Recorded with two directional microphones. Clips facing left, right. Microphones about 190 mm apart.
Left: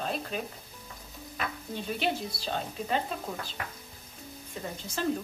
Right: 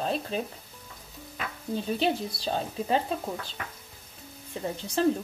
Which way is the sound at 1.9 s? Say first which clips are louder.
Right 3 dB; 35° right (ahead or behind).